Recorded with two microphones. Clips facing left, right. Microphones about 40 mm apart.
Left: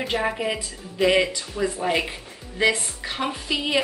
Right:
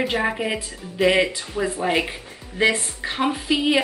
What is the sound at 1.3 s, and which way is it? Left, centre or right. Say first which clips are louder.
Speech: right 1 dB; right.